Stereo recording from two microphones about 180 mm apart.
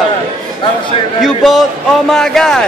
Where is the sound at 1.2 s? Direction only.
Centre (ahead or behind).